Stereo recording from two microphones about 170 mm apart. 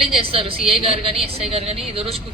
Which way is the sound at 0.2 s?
35° right (ahead or behind).